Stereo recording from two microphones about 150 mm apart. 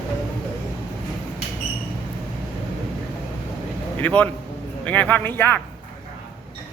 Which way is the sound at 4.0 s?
10° left (ahead or behind).